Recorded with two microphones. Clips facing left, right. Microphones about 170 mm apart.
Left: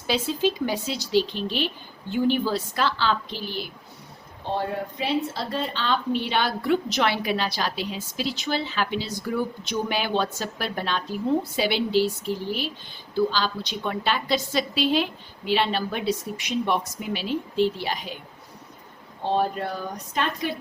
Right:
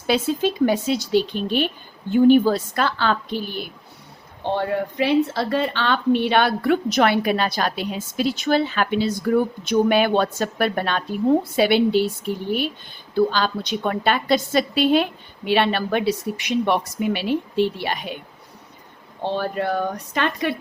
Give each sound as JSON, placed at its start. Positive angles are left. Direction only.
{"t": 0.1, "sound": "speech", "side_deg": -50}
{"t": 4.4, "sound": "a woman's voice", "side_deg": -70}
{"t": 19.2, "sound": "speech", "side_deg": -70}